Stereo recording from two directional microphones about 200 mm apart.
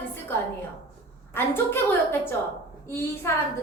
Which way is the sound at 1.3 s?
10° left (ahead or behind).